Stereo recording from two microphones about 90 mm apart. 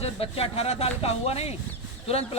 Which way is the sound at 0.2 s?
90° left.